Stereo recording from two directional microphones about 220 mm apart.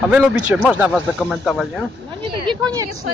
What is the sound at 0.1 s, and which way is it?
Speech, 5° right (ahead or behind).